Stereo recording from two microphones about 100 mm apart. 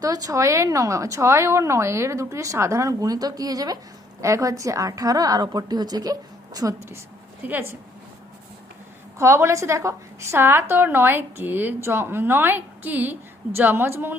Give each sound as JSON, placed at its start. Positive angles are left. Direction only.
{"t": 0.0, "sound": "speech", "side_deg": -35}
{"t": 7.4, "sound": "a woman's voice", "side_deg": -20}
{"t": 9.1, "sound": "a woman's voice", "side_deg": -25}